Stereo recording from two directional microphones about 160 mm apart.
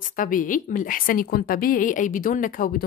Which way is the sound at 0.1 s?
55° left (ahead or behind).